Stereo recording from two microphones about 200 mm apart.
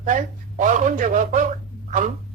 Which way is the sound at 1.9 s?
40° right (ahead or behind).